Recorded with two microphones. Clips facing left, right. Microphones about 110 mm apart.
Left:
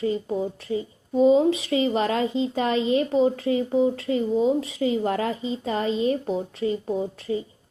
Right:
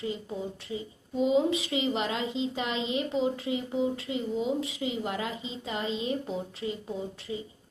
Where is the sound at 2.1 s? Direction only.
45° left (ahead or behind).